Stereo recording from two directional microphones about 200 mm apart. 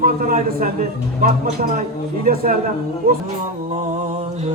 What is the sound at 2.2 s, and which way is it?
Speech, 50° right (ahead or behind).